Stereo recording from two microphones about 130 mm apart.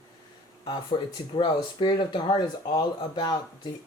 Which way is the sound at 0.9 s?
40° left (ahead or behind).